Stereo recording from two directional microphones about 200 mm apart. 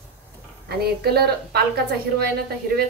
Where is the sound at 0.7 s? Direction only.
50° right (ahead or behind).